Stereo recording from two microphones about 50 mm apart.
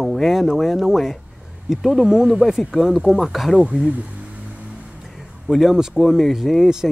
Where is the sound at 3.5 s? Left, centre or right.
Centre.